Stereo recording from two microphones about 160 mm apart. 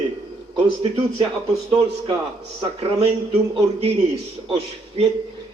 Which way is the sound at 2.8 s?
35° right (ahead or behind).